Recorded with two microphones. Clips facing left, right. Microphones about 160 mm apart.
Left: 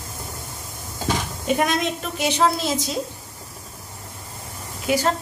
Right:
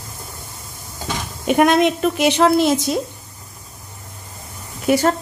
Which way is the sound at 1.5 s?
65° right (ahead or behind).